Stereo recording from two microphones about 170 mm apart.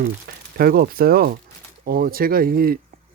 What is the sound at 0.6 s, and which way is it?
Speech, 60° right (ahead or behind).